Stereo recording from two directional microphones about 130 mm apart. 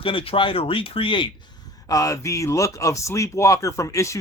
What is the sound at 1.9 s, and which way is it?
Speech, 25° left (ahead or behind).